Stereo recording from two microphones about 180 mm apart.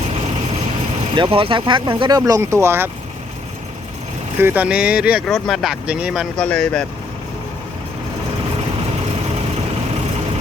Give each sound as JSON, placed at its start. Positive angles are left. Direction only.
{"t": 1.1, "sound": "speech", "side_deg": -30}
{"t": 4.4, "sound": "speech", "side_deg": -10}
{"t": 6.3, "sound": "speech", "side_deg": 5}